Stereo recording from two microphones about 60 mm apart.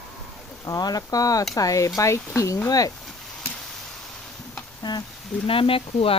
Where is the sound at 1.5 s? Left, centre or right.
Left.